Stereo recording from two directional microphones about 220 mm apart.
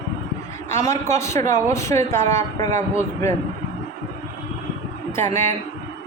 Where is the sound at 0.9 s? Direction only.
30° right (ahead or behind).